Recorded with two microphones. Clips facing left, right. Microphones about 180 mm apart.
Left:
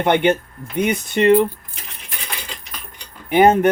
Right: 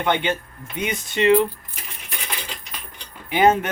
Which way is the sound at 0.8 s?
55° left (ahead or behind).